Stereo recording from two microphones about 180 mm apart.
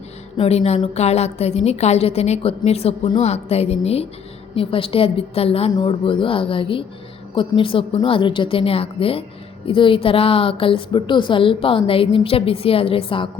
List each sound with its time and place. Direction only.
0.3 s a woman's voice: 35° left (ahead or behind)